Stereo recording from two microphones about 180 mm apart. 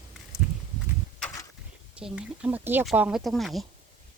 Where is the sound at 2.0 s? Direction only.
5° right (ahead or behind).